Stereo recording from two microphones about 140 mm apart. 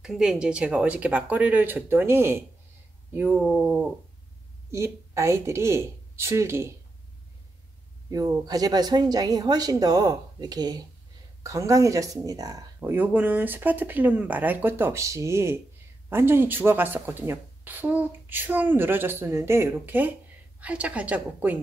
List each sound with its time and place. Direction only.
0.0 s a woman's voice: 5° right (ahead or behind)
4.6 s speech: 20° right (ahead or behind)
8.1 s speech: 25° right (ahead or behind)
12.9 s a woman's voice: 15° right (ahead or behind)